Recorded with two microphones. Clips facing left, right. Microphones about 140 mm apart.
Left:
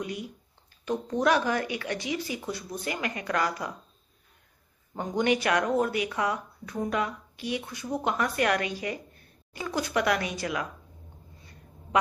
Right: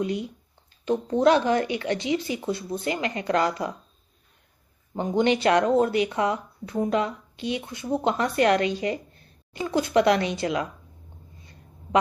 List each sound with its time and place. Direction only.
0.0 s speech: 25° right (ahead or behind)
4.9 s speech: 25° right (ahead or behind)